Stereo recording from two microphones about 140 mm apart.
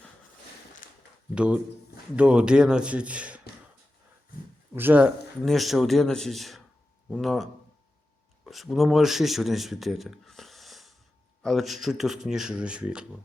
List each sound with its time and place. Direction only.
0.8 s a sound: 75° left (ahead or behind)
1.4 s speech: 10° right (ahead or behind)
4.7 s speech: 15° right (ahead or behind)
5.5 s speech: centre (ahead or behind)